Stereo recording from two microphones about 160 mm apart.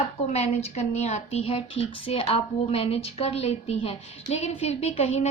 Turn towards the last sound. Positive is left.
turn(degrees=40)  # may be behind; listen again after turning